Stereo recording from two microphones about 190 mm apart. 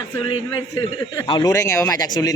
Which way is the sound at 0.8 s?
15° left (ahead or behind).